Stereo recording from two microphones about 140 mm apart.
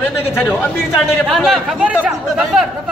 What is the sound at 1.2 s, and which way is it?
Speech, centre (ahead or behind).